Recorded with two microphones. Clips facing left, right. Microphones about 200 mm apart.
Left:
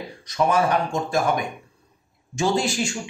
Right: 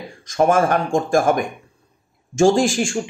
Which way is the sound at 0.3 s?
50° right (ahead or behind).